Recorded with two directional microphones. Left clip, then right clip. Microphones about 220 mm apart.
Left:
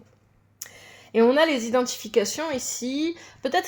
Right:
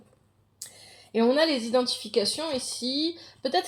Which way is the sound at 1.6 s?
15° left (ahead or behind).